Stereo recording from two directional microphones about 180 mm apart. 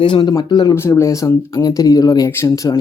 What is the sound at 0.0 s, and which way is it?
Speech, 25° left (ahead or behind).